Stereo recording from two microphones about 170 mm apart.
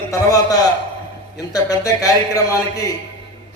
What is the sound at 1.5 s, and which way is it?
A man's voice, 20° left (ahead or behind).